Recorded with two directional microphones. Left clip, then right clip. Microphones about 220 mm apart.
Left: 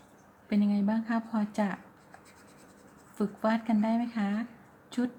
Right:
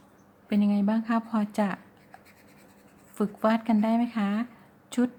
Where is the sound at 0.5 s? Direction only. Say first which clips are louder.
Right 3 dB; 20° right (ahead or behind).